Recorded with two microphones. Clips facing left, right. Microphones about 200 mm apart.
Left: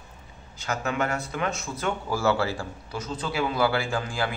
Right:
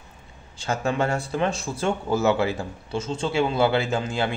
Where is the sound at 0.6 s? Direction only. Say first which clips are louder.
Right 3 dB; 30° right (ahead or behind).